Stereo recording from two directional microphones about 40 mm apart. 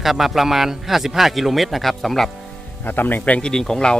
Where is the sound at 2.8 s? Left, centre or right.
Left.